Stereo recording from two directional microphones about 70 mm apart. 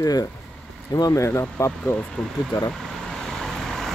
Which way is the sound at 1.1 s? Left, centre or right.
Left.